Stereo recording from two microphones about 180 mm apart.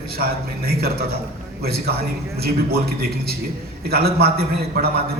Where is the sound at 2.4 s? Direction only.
60° right (ahead or behind).